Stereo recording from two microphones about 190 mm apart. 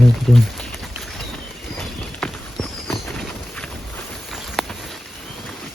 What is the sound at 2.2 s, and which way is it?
Clip-clop, 5° left (ahead or behind).